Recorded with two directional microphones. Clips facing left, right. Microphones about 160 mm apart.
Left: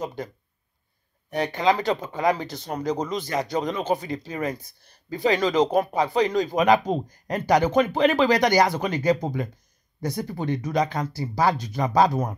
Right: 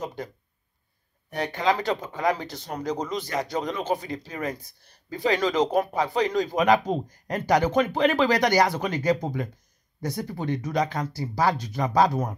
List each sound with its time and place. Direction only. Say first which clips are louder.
1.3 s speech: left 3 dB; 20° left (ahead or behind)